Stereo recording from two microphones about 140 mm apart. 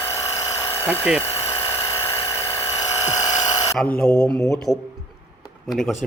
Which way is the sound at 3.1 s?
25° left (ahead or behind).